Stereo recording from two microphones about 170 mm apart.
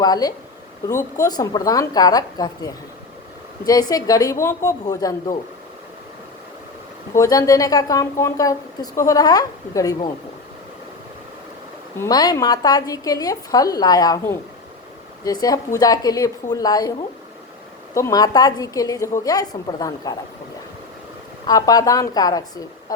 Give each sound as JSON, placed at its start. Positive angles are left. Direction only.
{"t": 0.0, "sound": "a woman's voice", "side_deg": 20}
{"t": 7.2, "sound": "a woman's voice", "side_deg": 20}
{"t": 11.9, "sound": "a woman's voice", "side_deg": 20}
{"t": 17.9, "sound": "a woman's voice", "side_deg": 20}
{"t": 21.4, "sound": "a woman's voice", "side_deg": 20}